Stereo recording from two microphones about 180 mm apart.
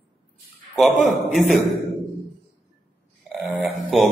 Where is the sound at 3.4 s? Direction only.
Centre (ahead or behind).